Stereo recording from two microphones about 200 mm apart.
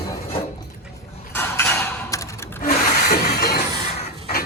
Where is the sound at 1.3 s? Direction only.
10° left (ahead or behind).